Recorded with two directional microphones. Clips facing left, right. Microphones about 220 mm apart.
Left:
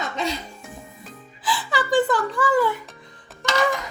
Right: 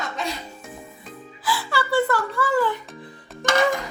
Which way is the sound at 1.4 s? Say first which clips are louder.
Even; 20° left (ahead or behind).